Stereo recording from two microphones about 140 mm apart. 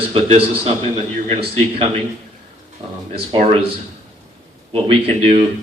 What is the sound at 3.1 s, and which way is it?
Speech, 40° right (ahead or behind).